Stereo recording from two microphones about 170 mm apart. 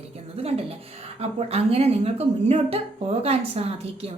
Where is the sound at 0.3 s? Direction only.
35° right (ahead or behind).